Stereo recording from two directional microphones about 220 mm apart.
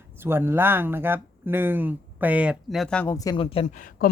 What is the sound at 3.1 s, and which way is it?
Speech, 15° left (ahead or behind).